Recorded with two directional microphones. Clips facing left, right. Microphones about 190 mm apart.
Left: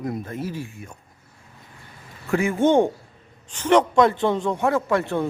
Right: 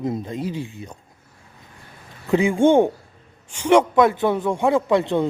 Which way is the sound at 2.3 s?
15° right (ahead or behind).